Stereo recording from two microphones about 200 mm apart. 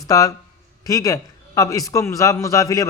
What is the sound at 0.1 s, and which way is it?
A man's voice, 15° left (ahead or behind).